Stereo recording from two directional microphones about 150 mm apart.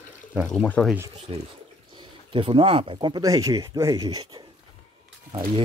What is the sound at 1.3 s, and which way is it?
Speech, 35° right (ahead or behind).